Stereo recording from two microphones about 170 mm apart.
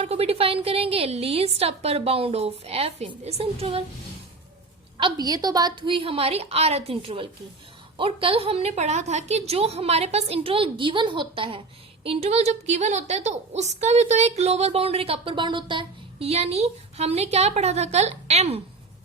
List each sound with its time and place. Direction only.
0.0 s a woman's voice: 35° right (ahead or behind)
4.9 s a woman's voice: 25° right (ahead or behind)